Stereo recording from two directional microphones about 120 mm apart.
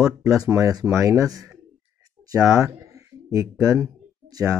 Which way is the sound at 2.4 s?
5° right (ahead or behind).